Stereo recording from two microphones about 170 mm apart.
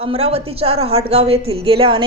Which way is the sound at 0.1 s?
35° right (ahead or behind).